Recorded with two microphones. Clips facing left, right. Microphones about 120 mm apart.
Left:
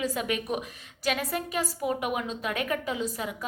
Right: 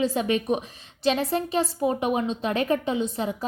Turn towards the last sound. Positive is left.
turn(degrees=-30)  # may be behind; listen again after turning